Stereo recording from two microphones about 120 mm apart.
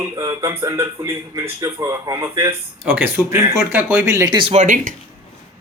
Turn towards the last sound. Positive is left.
turn(degrees=-90)